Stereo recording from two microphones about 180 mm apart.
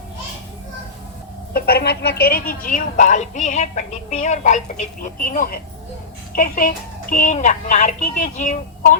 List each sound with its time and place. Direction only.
1.5 s a woman's voice: 60° left (ahead or behind)